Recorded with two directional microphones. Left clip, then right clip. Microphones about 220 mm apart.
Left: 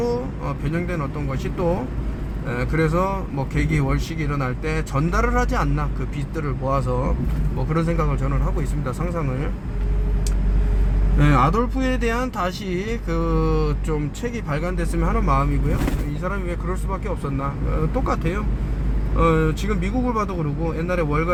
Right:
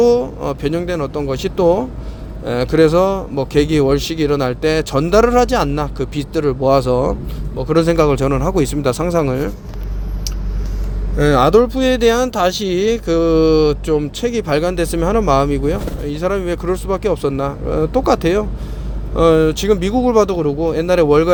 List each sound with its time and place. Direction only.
0.0 s speech: 35° right (ahead or behind)
11.2 s speech: 35° right (ahead or behind)